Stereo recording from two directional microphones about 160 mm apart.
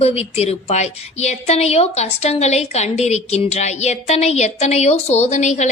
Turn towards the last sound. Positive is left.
turn(degrees=45)  # may be behind; listen again after turning